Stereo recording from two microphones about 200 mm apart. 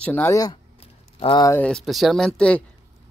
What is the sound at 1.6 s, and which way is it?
Speech, centre (ahead or behind).